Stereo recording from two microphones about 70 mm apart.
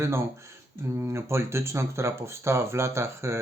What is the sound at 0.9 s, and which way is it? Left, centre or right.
Speech, right.